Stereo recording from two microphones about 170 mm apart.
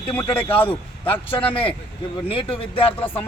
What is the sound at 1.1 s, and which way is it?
Speech, 30° left (ahead or behind).